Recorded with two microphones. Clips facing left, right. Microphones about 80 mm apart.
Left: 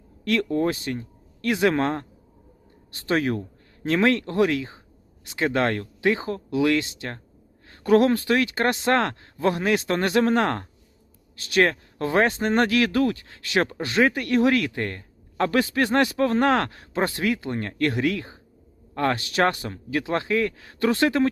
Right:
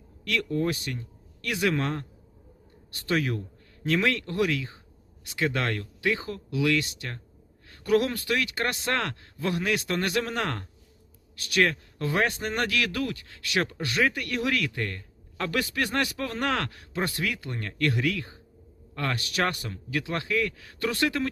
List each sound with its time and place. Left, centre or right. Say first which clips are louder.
0.3 s speech: left 5 dB; left